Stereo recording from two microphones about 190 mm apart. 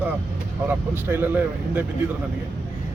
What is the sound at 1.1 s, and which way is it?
Speech, 10° right (ahead or behind).